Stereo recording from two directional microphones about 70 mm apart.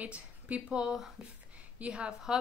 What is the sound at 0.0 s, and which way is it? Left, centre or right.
A woman's voice, centre.